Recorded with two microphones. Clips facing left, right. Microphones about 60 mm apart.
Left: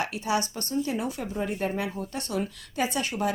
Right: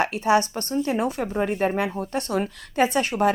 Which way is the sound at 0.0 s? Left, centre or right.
Right.